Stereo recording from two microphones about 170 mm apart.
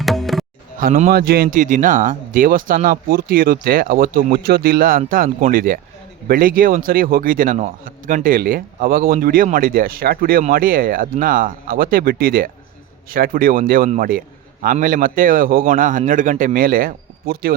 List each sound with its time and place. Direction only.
0.0 s tabla: centre (ahead or behind)
1.1 s speech: 60° right (ahead or behind)